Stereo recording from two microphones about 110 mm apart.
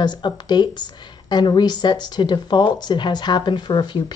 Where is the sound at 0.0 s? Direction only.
40° left (ahead or behind).